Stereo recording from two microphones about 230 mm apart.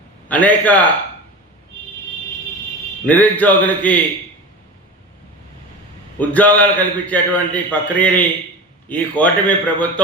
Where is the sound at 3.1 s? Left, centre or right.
Centre.